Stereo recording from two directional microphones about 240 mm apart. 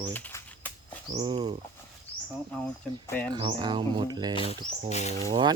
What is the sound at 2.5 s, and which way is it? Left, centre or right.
Speech, centre.